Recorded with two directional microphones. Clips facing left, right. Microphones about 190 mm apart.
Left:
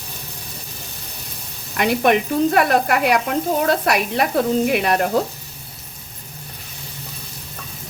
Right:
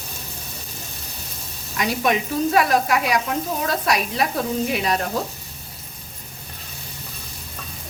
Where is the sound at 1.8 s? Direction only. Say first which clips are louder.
Left 5 dB; 60° left (ahead or behind).